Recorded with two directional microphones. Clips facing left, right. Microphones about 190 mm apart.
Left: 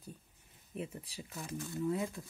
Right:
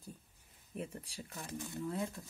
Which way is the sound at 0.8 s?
5° left (ahead or behind).